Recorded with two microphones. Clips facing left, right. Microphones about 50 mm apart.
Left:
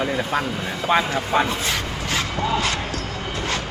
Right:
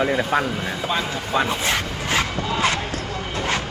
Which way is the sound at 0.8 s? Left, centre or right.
Left.